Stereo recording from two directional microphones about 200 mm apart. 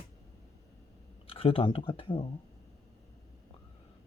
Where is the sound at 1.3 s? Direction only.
30° left (ahead or behind).